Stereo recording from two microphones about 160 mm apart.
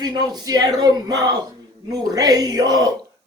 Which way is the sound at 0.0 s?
25° right (ahead or behind).